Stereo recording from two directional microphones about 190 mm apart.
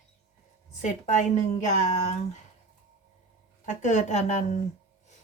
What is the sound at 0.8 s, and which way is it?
Speech, 40° left (ahead or behind).